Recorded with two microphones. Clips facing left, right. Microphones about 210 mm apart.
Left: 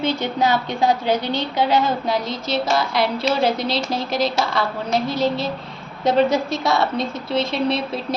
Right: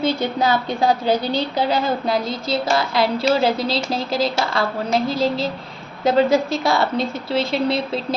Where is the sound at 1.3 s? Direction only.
35° right (ahead or behind).